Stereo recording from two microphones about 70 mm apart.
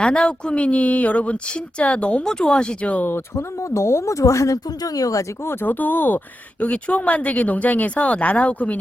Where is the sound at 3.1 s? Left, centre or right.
Left.